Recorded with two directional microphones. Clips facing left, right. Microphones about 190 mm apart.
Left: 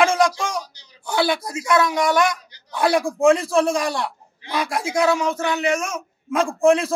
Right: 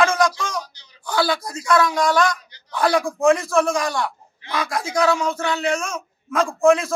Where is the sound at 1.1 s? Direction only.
25° left (ahead or behind).